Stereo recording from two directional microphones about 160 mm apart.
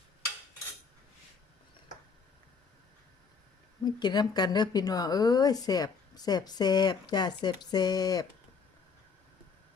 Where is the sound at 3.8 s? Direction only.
25° left (ahead or behind).